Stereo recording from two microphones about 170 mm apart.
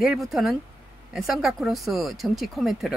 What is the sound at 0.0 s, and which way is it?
Speech, centre (ahead or behind).